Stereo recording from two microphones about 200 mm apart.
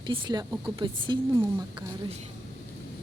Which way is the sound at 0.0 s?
20° right (ahead or behind).